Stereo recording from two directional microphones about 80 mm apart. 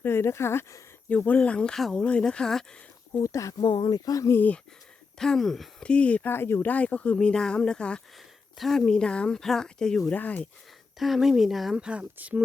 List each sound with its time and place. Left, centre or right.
0.0 s speech: left
1.1 s speech: centre
3.1 s speech: left
3.6 s speech: left
4.3 s speech: left
5.1 s speech: centre
5.8 s speech: centre
6.3 s speech: left; by 10.2 s centre
10.2 s speech: centre
11.0 s speech: centre
11.8 s speech: centre